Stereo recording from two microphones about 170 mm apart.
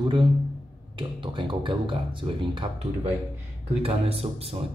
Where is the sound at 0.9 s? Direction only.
30° right (ahead or behind).